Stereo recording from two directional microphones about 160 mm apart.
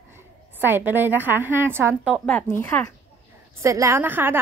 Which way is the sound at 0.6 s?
10° right (ahead or behind).